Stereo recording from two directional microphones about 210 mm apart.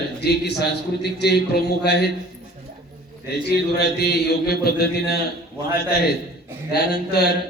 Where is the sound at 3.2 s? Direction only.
50° left (ahead or behind).